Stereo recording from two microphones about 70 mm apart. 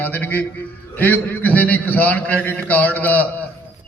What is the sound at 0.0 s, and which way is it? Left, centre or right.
A man's voice, left.